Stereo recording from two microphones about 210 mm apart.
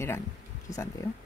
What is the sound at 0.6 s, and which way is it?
Speech, 15° left (ahead or behind).